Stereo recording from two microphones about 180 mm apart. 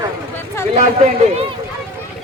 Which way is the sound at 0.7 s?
40° right (ahead or behind).